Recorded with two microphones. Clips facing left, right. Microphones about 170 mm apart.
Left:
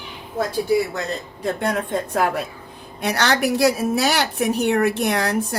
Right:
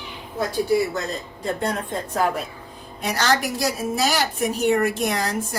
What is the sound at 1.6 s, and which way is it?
A woman's voice, 65° left (ahead or behind).